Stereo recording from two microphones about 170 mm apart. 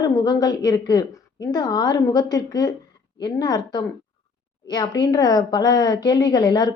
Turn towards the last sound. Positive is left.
turn(degrees=25)  # may be behind; listen again after turning